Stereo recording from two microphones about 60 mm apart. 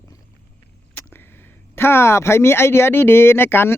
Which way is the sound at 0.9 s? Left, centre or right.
Left.